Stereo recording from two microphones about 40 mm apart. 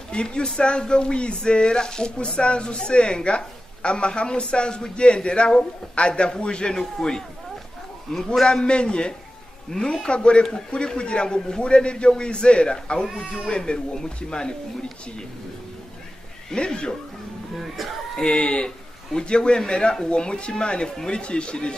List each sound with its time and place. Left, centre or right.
0.1 s a man's voice: left
9.7 s a man's voice: centre
10.0 s speech: left
13.0 s speech: centre
13.5 s speech: centre
16.5 s speech: left
17.6 s speech: centre
18.2 s speech: left